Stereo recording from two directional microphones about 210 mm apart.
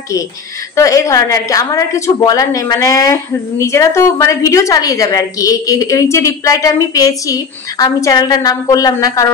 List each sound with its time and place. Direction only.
0.7 s a woman's voice: 15° left (ahead or behind)